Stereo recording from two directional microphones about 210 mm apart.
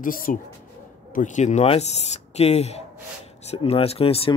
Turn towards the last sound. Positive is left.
turn(degrees=25)  # may be behind; listen again after turning